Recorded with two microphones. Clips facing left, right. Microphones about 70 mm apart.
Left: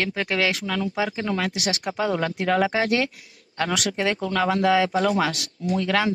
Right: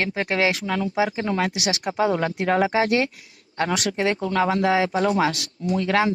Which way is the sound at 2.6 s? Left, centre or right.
Centre.